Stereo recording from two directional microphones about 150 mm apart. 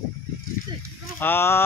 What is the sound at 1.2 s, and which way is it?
Speech, 15° left (ahead or behind).